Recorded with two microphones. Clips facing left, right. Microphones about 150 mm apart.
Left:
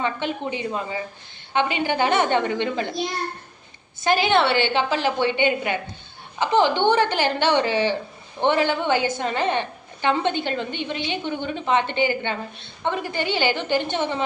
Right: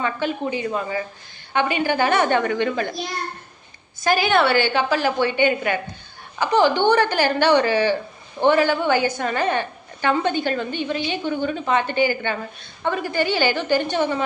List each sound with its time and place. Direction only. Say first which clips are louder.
0.0 s a woman's voice: right 2 dB; 20° left (ahead or behind)
4.0 s a woman's voice: right 1 dB; 25° left (ahead or behind)